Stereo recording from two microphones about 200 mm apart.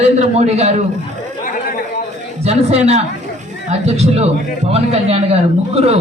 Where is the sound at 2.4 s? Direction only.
30° right (ahead or behind).